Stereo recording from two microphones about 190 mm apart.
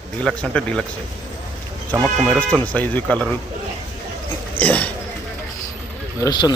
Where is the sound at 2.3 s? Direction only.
10° left (ahead or behind).